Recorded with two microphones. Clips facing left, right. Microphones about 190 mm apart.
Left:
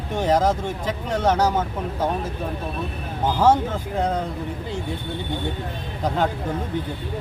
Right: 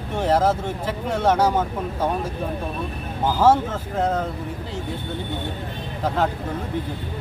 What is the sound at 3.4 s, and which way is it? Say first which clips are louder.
Speech: right 1 dB; 5° right (ahead or behind).